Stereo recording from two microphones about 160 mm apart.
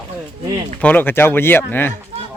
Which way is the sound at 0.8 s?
10° left (ahead or behind).